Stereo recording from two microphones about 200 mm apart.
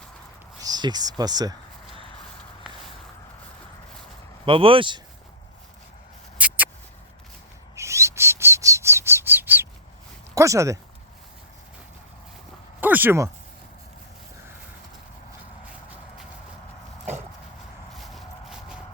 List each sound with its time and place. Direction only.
0.6 s a sound: 20° right (ahead or behind)
1.2 s speech: 20° right (ahead or behind)
4.4 s speech: 25° right (ahead or behind)
6.3 s a sound: 10° right (ahead or behind)
7.8 s bird: 15° right (ahead or behind)
10.3 s speech: 15° right (ahead or behind)
12.8 s speech: 10° right (ahead or behind)